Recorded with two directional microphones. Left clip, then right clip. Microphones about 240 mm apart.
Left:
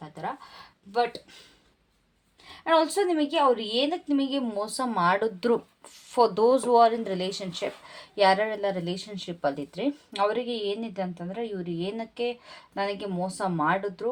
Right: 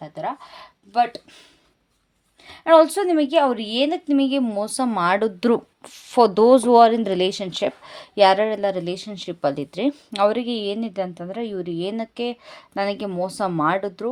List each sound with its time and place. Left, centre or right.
0.9 s a woman's voice: right